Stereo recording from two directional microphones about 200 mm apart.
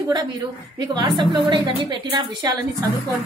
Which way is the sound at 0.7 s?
20° right (ahead or behind).